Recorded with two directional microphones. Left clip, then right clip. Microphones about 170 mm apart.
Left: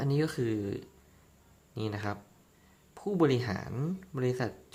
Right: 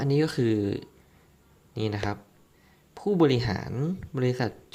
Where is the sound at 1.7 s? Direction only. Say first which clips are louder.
Right 6 dB; 5° right (ahead or behind).